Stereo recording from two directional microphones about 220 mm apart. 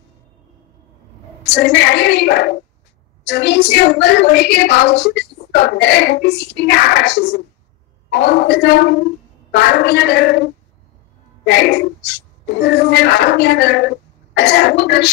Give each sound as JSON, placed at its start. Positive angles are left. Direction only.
{"t": 1.4, "sound": "a woman's voice", "side_deg": 50}